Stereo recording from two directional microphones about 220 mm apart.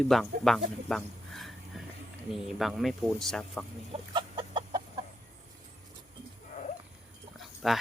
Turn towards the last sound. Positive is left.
turn(degrees=0)  # may be behind; listen again after turning